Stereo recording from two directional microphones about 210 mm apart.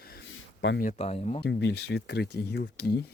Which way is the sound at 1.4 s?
55° left (ahead or behind).